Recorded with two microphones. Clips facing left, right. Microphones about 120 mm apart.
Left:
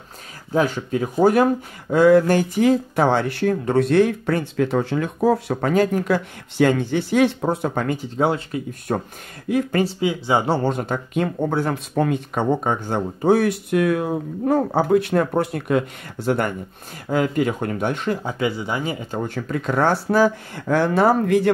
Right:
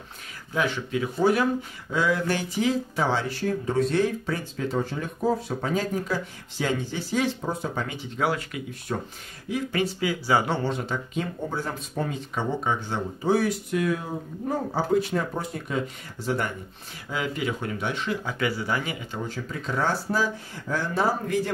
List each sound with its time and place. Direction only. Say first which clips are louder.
0.5 s speech: left 6 dB; 40° left (ahead or behind); by 8.0 s 55° left (ahead or behind)
8.2 s speech: left 5 dB; 25° left (ahead or behind)
8.9 s speech: left 7 dB; 50° left (ahead or behind)
9.8 s speech: left 4 dB; 25° left (ahead or behind)
10.6 s speech: left 6 dB; 50° left (ahead or behind); by 15.8 s 65° left (ahead or behind)
16.3 s speech: left 6 dB; 55° left (ahead or behind)
18.2 s speech: left 4 dB; 20° left (ahead or behind)
19.1 s speech: left 8 dB; 55° left (ahead or behind)